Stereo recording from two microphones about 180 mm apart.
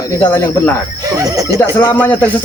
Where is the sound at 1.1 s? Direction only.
20° right (ahead or behind).